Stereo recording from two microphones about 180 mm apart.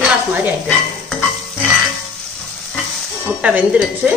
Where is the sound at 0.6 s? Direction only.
5° left (ahead or behind).